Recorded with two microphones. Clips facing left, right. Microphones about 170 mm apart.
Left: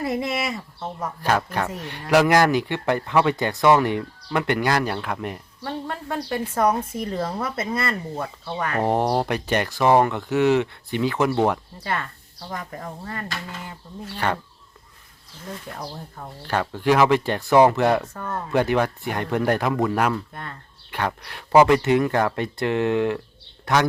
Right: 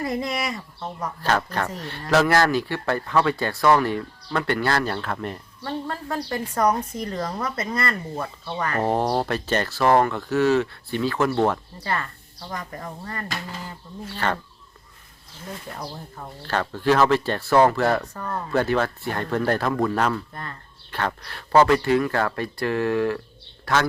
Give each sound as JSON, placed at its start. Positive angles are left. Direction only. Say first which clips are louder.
{"t": 0.4, "sound": "speech", "louder": "left 1 dB", "side_deg": 5}
{"t": 5.6, "sound": "speech", "louder": "even", "side_deg": 0}
{"t": 8.8, "sound": "speech", "louder": "left 1 dB", "side_deg": 15}
{"t": 15.7, "sound": "speech", "louder": "even", "side_deg": 0}
{"t": 16.4, "sound": "speech", "louder": "left 1 dB", "side_deg": 15}
{"t": 18.1, "sound": "speech", "louder": "even", "side_deg": 0}
{"t": 18.5, "sound": "speech", "louder": "left 2 dB", "side_deg": 15}
{"t": 20.9, "sound": "speech", "louder": "left 1 dB", "side_deg": 15}